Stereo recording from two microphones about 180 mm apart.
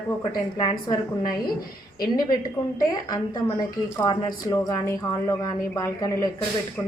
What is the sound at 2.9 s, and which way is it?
A woman's voice, 20° left (ahead or behind).